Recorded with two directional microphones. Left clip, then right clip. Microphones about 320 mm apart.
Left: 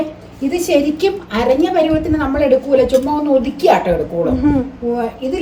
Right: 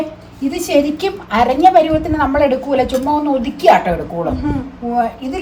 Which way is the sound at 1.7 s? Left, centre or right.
Centre.